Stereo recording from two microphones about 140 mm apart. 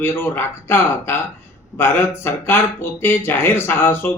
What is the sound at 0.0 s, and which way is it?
Speech, 15° left (ahead or behind).